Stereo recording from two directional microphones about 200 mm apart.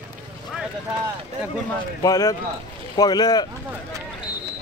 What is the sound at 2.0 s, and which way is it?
Speech, 15° left (ahead or behind).